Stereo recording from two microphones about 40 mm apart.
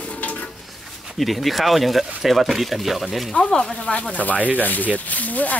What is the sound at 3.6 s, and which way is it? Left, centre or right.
Speech, left.